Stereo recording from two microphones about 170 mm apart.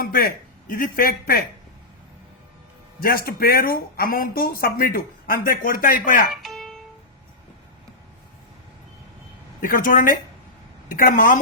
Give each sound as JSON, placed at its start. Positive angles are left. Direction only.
{"t": 0.0, "sound": "speech", "side_deg": 60}
{"t": 3.0, "sound": "speech", "side_deg": 60}
{"t": 6.3, "sound": "music", "side_deg": 0}
{"t": 9.6, "sound": "speech", "side_deg": 55}